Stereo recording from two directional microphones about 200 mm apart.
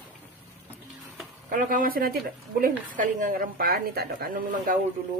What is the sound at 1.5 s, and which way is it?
A woman's voice, 45° right (ahead or behind).